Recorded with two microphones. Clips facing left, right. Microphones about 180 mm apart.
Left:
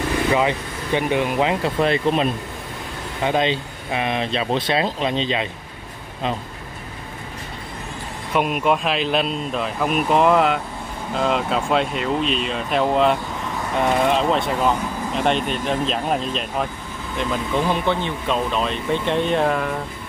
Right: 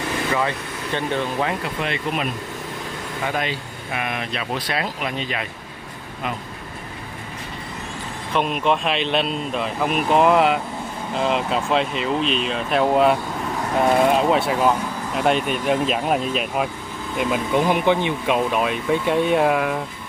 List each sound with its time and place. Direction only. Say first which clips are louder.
0.3 s speech: left 4 dB; 15° left (ahead or behind)
1.8 s speech: left 9 dB; 35° left (ahead or behind)
3.3 s speech: left 6 dB; 25° left (ahead or behind)
8.3 s speech: left 1 dB; 5° left (ahead or behind)